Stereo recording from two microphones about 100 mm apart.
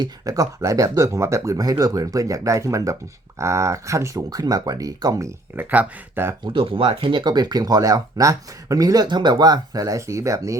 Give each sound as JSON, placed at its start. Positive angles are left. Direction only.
{"t": 0.0, "sound": "speech", "side_deg": -35}
{"t": 5.5, "sound": "speech", "side_deg": -15}
{"t": 6.4, "sound": "speech", "side_deg": -60}